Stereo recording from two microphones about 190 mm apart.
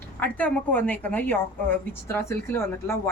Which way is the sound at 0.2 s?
10° left (ahead or behind).